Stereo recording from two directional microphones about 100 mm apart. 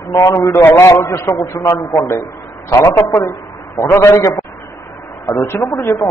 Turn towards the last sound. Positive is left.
turn(degrees=30)  # may be behind; listen again after turning